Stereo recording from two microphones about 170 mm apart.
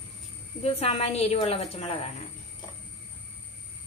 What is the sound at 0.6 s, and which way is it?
A woman's voice, 35° left (ahead or behind).